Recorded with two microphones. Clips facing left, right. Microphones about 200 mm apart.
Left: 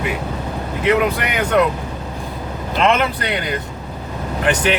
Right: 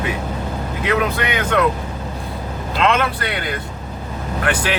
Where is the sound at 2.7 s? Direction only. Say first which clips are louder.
Left 1 dB; 20° left (ahead or behind).